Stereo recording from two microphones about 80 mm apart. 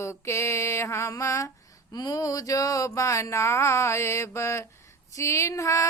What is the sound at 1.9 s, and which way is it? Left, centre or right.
Mantra, left.